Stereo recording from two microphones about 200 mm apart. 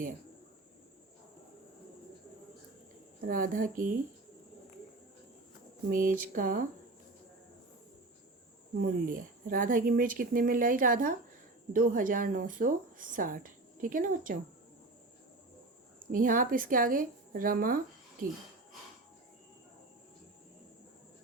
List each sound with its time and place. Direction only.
3.2 s speech: 45° right (ahead or behind)
5.9 s speech: 45° right (ahead or behind)
8.8 s speech: 40° right (ahead or behind)
16.1 s speech: 45° right (ahead or behind)